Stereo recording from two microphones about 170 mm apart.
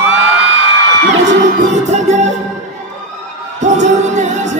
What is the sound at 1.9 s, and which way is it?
Music, 45° right (ahead or behind).